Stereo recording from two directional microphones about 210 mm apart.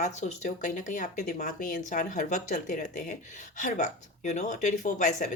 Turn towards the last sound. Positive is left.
turn(degrees=35)  # may be behind; listen again after turning